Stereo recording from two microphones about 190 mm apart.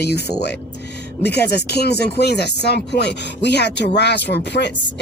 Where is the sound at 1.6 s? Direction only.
60° left (ahead or behind).